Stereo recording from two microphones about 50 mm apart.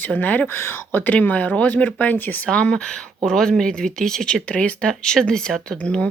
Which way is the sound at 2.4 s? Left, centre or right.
Centre.